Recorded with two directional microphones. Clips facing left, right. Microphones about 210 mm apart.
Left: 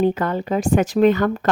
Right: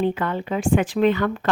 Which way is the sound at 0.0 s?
40° left (ahead or behind).